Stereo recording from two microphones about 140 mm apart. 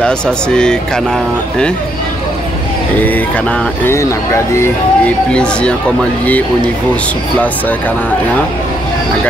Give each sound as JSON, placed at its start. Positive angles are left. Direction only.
{"t": 3.8, "sound": "speech", "side_deg": 20}
{"t": 4.6, "sound": "speech", "side_deg": 10}